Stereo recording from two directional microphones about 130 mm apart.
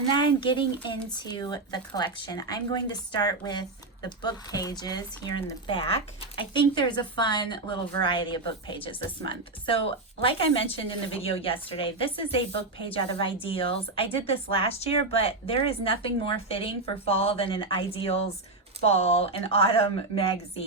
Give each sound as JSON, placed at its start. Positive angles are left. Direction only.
{"t": 0.1, "sound": "a woman's voice", "side_deg": 35}